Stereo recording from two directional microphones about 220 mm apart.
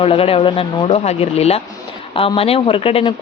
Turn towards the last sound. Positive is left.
turn(degrees=25)  # may be behind; listen again after turning